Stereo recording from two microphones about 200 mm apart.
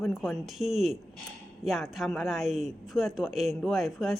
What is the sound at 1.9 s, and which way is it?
Speech, centre (ahead or behind).